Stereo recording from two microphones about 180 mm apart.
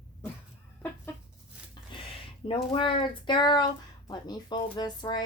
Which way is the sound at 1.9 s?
25° left (ahead or behind).